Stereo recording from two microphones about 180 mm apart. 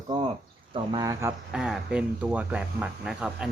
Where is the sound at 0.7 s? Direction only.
25° right (ahead or behind).